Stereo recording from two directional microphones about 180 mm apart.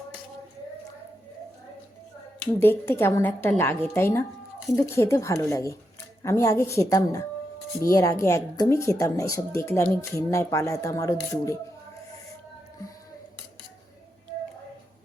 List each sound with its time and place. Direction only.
2.4 s speech: 10° left (ahead or behind)